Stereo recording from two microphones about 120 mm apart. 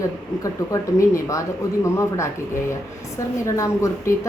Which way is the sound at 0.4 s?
25° left (ahead or behind).